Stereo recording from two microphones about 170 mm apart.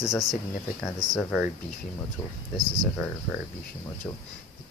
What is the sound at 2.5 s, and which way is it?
Speech, 25° right (ahead or behind).